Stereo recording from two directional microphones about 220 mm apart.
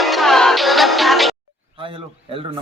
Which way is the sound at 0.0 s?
Centre (ahead or behind).